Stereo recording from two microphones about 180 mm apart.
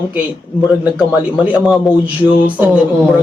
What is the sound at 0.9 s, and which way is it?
Speech, 5° right (ahead or behind).